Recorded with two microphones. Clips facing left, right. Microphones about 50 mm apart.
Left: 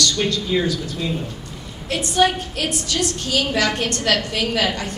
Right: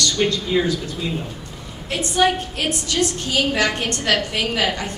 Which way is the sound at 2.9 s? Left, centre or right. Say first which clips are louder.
Right 1 dB; right.